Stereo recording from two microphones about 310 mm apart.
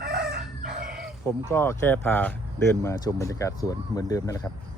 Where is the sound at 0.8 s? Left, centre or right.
Centre.